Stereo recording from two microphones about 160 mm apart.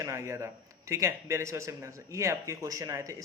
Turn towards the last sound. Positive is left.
turn(degrees=-20)  # may be behind; listen again after turning